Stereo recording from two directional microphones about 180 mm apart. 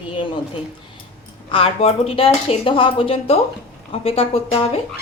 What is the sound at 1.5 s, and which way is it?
A woman's voice, 30° left (ahead or behind).